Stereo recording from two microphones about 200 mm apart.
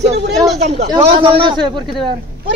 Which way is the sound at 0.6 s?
35° right (ahead or behind).